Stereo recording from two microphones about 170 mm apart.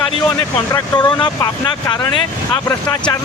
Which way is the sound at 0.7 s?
25° left (ahead or behind).